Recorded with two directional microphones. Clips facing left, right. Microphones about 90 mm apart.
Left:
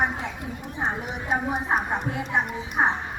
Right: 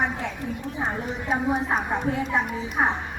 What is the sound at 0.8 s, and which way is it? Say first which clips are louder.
A woman's voice: left 1 dB; 5° left (ahead or behind).